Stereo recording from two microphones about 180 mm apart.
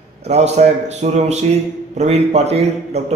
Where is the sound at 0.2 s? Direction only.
35° right (ahead or behind).